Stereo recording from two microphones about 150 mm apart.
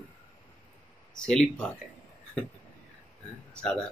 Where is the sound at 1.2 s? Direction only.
5° left (ahead or behind).